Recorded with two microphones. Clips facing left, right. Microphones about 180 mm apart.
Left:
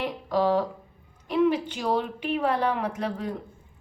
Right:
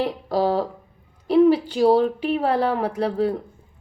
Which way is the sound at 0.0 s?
35° right (ahead or behind).